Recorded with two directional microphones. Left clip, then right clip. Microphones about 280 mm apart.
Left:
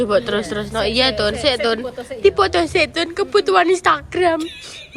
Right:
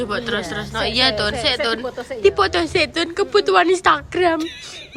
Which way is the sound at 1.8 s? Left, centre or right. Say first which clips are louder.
Right 1 dB; right.